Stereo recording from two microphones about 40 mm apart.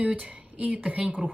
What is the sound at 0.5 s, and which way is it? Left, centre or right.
Speech, right.